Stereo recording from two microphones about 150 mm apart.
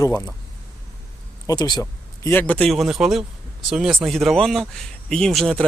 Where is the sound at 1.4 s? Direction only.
30° left (ahead or behind); by 2.7 s 10° left (ahead or behind).